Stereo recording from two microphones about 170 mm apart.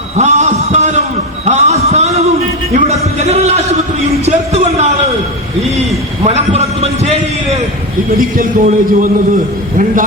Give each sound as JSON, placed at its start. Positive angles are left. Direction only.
{"t": 0.2, "sound": "a man's voice", "side_deg": -40}
{"t": 1.5, "sound": "a sound", "side_deg": -40}
{"t": 2.7, "sound": "a man's voice", "side_deg": -40}
{"t": 6.2, "sound": "a man's voice", "side_deg": -40}
{"t": 8.4, "sound": "a man's voice", "side_deg": -55}